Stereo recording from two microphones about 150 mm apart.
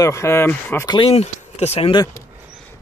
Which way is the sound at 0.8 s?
35° left (ahead or behind).